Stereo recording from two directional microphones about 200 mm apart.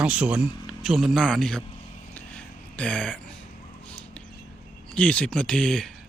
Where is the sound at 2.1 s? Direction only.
5° left (ahead or behind).